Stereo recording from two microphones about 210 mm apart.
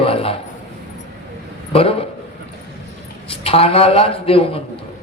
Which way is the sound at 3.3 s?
25° left (ahead or behind).